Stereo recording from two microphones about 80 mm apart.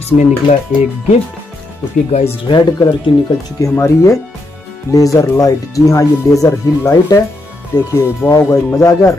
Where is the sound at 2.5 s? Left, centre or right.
Left.